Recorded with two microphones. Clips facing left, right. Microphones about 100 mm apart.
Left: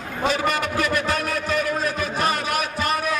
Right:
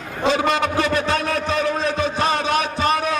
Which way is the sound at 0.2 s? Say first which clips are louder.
Right 4 dB; 25° right (ahead or behind).